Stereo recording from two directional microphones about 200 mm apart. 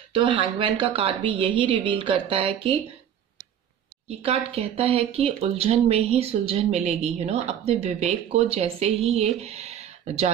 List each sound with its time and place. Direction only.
0.1 s speech: 25° right (ahead or behind)
4.2 s speech: 30° right (ahead or behind)